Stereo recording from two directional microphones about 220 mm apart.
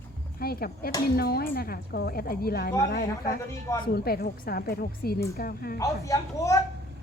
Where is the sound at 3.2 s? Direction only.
15° left (ahead or behind).